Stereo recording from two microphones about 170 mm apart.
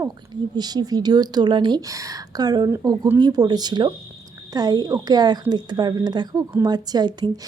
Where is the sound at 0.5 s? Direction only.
25° right (ahead or behind).